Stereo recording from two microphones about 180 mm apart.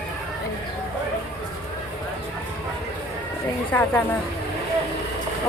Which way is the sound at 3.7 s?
10° left (ahead or behind).